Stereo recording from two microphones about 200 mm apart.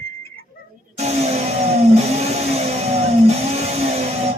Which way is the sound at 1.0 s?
30° right (ahead or behind).